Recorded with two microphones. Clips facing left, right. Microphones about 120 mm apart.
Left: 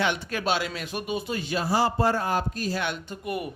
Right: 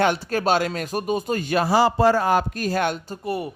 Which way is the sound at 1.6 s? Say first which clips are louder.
Right 6 dB; 90° right.